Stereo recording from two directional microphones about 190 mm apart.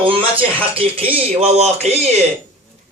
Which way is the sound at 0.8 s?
30° right (ahead or behind).